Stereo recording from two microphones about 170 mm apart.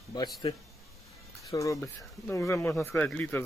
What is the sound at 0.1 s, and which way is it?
Speech, 25° left (ahead or behind).